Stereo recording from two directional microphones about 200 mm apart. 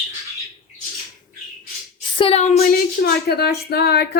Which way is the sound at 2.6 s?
50° left (ahead or behind).